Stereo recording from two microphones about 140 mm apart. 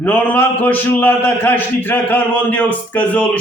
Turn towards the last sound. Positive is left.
turn(degrees=10)  # may be behind; listen again after turning